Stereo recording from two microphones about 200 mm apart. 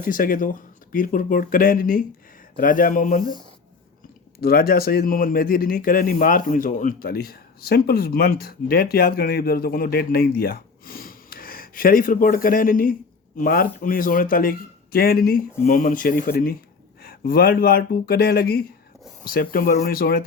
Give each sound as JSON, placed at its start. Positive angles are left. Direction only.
{"t": 0.0, "sound": "speech", "side_deg": 45}
{"t": 4.4, "sound": "speech", "side_deg": 50}